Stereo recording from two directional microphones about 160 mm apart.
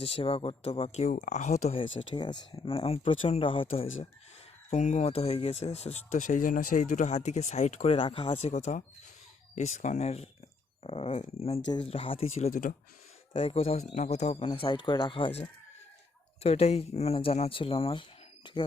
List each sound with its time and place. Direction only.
0.0 s speech: 35° left (ahead or behind)
4.7 s speech: 45° left (ahead or behind)
11.6 s speech: 25° left (ahead or behind)
12.5 s speech: 60° left (ahead or behind)
13.3 s speech: 35° left (ahead or behind)